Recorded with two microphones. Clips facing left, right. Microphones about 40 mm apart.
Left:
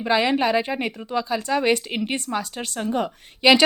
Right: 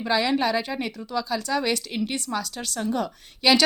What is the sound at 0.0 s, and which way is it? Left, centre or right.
Speech, left.